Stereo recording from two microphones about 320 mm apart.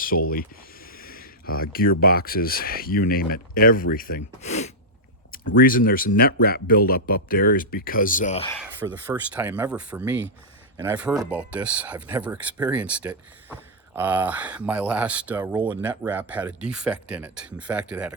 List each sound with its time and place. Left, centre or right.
0.0 s speech: left
8.8 s speech: centre